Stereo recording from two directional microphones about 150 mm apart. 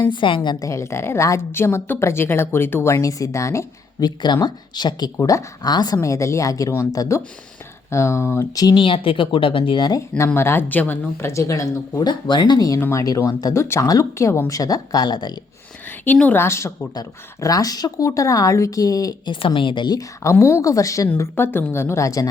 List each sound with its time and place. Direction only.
0.0 s a woman's voice: 30° left (ahead or behind)
10.2 s a woman's voice: 15° left (ahead or behind)
16.1 s a woman's voice: 10° left (ahead or behind)